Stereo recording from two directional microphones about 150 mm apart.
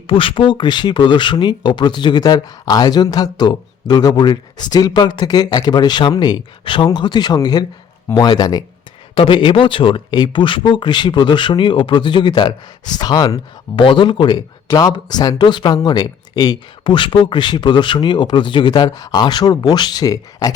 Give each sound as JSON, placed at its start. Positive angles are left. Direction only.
{"t": 0.1, "sound": "speech", "side_deg": 35}